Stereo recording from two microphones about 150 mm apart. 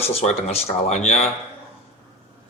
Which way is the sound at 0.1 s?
45° left (ahead or behind).